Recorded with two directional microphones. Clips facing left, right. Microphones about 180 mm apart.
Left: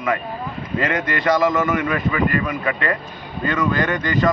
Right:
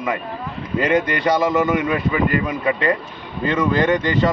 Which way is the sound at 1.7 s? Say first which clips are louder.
Right 2 dB; 20° right (ahead or behind).